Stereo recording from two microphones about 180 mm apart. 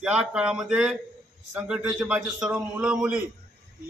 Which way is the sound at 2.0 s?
5° right (ahead or behind).